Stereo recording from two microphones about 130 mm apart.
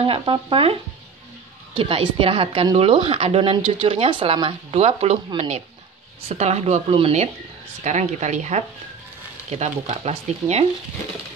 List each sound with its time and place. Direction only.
0.0 s a woman's voice: 45° right (ahead or behind)
6.2 s a woman's voice: 60° right (ahead or behind)
7.8 s speech: 65° right (ahead or behind)